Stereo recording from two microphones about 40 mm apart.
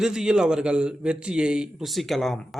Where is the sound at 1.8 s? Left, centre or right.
Centre.